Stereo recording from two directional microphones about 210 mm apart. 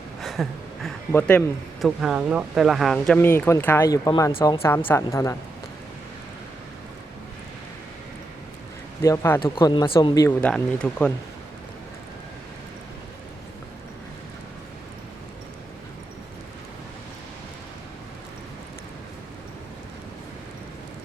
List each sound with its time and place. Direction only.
0.2 s a sound: centre (ahead or behind)
1.1 s speech: 5° left (ahead or behind)
9.0 s speech: 15° left (ahead or behind)
9.4 s speech: 25° left (ahead or behind)
10.4 s speech: 5° left (ahead or behind)